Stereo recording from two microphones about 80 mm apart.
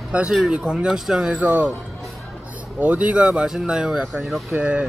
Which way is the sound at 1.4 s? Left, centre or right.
Centre.